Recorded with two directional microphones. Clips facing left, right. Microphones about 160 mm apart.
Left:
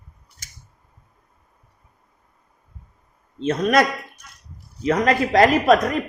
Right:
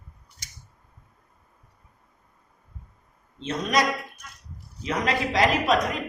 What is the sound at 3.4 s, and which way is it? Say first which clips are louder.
Speech: left 7 dB; 55° left (ahead or behind).